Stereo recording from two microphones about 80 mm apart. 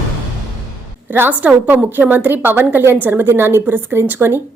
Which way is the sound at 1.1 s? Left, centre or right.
Right.